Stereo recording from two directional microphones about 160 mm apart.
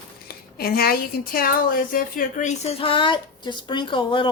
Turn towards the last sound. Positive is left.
turn(degrees=30)  # may be behind; listen again after turning